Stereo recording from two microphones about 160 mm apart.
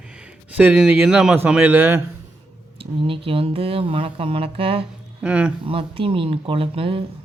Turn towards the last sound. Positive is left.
turn(degrees=-35)  # may be behind; listen again after turning